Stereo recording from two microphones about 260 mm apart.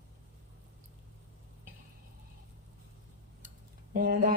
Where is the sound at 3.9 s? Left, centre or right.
Right.